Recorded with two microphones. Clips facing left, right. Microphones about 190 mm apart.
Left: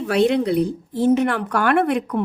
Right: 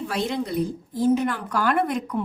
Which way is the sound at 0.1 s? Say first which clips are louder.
Left 11 dB; 70° left (ahead or behind).